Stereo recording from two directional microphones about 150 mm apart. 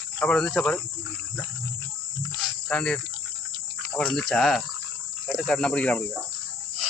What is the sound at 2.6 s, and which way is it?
Speech, 5° left (ahead or behind).